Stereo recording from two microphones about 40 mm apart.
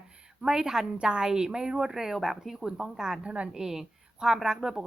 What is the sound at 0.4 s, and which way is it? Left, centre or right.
A woman's voice, centre.